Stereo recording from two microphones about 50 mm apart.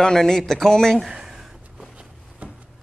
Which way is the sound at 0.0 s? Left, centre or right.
Centre.